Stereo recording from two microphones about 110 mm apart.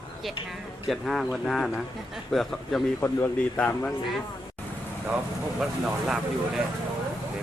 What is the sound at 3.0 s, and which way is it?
Speech, 20° left (ahead or behind).